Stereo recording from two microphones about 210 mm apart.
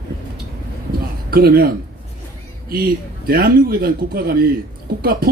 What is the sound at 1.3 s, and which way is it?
Speech, 45° right (ahead or behind).